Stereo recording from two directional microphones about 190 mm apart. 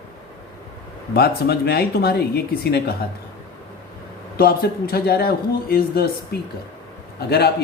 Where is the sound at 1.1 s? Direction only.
55° left (ahead or behind).